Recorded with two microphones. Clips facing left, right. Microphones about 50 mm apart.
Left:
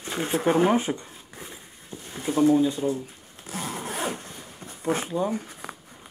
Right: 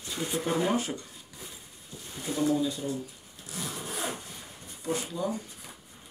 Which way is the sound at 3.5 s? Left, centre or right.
Left.